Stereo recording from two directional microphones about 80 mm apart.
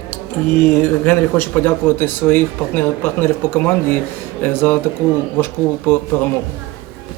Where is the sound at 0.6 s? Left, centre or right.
Left.